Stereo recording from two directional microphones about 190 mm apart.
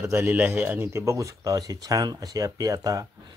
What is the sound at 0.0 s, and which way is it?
Speech, 15° right (ahead or behind).